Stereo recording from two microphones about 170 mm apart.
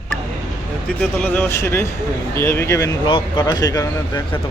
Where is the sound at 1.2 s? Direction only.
10° left (ahead or behind).